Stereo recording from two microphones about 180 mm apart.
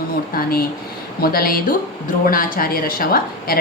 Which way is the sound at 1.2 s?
55° left (ahead or behind).